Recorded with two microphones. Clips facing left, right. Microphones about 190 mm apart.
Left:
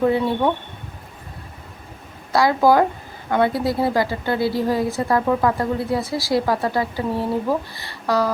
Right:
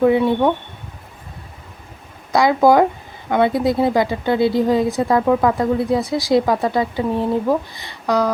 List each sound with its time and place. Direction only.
0.0 s a woman's voice: 15° right (ahead or behind)
2.3 s a woman's voice: 20° right (ahead or behind)